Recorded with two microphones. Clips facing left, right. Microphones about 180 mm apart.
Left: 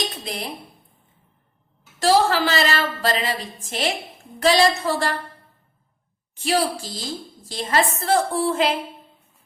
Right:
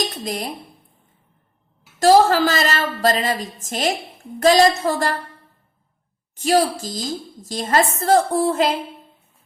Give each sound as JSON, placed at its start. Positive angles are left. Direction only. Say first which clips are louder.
{"t": 0.3, "sound": "a woman's voice", "louder": "right 4 dB", "side_deg": -45}
{"t": 2.0, "sound": "a woman's voice", "louder": "right 5 dB", "side_deg": -45}
{"t": 6.3, "sound": "a woman's voice", "louder": "right 4 dB", "side_deg": -40}